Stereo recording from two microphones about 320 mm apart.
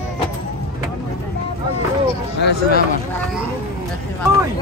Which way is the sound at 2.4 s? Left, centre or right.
Left.